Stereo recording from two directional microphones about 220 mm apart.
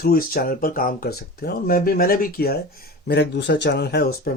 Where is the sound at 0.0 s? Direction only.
40° left (ahead or behind).